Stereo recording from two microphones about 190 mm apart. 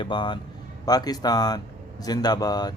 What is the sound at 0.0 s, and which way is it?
Speech, 25° left (ahead or behind).